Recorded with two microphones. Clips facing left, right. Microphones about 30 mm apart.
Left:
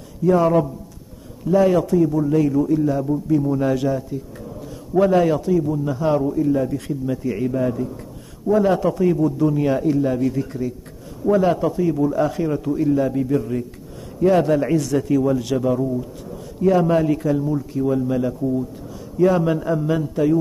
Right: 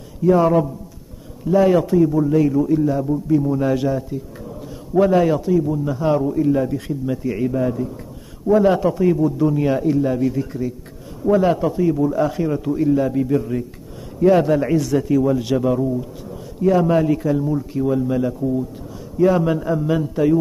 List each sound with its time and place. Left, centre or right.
0.2 s a man's voice: centre
6.3 s a man's voice: centre
6.6 s a man's voice: centre